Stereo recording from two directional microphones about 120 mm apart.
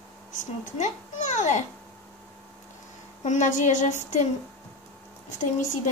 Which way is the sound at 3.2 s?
90° left.